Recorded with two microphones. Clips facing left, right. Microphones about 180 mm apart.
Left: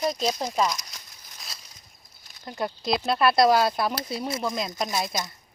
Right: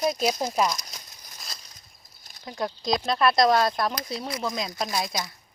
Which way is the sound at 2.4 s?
Centre (ahead or behind).